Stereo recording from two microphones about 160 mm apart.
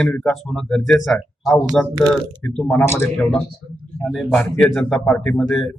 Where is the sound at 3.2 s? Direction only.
5° left (ahead or behind).